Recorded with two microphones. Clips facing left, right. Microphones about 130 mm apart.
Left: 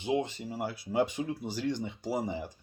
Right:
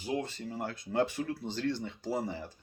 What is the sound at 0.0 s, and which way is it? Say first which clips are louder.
Speech: left 4 dB; 20° left (ahead or behind).